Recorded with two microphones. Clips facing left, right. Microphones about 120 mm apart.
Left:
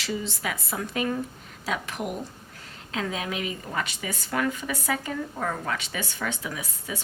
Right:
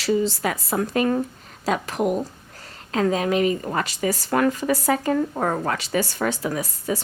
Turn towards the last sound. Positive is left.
turn(degrees=-40)  # may be behind; listen again after turning